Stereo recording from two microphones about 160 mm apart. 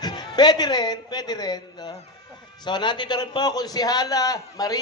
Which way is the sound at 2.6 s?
30° left (ahead or behind).